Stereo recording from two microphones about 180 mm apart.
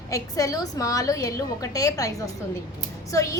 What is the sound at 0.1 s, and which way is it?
A woman's voice, 20° left (ahead or behind).